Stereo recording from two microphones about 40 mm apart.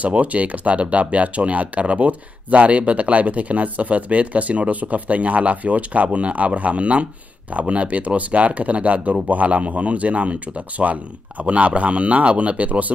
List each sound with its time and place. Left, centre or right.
0.0 s speech: right